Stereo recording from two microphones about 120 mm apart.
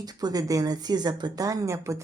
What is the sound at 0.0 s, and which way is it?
Speech, 35° right (ahead or behind).